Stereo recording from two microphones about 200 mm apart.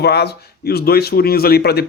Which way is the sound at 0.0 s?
55° left (ahead or behind).